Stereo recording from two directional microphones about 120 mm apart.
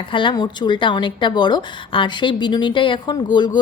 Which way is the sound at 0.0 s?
45° left (ahead or behind).